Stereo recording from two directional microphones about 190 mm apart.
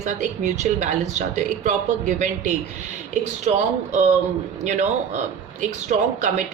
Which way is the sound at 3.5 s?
40° right (ahead or behind).